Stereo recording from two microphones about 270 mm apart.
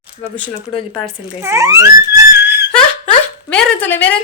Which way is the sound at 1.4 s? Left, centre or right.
Centre.